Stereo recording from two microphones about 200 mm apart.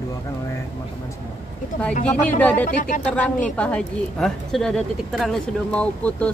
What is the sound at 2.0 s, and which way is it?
Speech, 5° left (ahead or behind).